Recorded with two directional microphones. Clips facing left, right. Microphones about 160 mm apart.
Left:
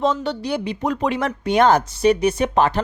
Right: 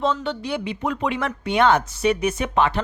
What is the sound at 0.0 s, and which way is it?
Speech, 40° left (ahead or behind).